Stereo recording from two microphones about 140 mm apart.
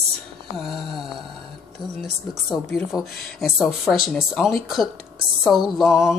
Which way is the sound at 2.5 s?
Centre (ahead or behind).